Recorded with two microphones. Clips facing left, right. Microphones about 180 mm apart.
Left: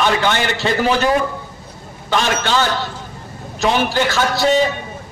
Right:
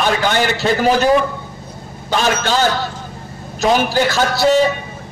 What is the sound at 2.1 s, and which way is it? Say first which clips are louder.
A man's voice: right 1 dB; 40° right (ahead or behind).